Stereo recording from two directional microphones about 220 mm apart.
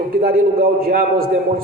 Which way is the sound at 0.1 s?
40° right (ahead or behind).